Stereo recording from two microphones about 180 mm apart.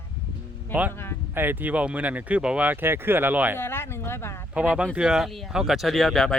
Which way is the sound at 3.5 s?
15° left (ahead or behind).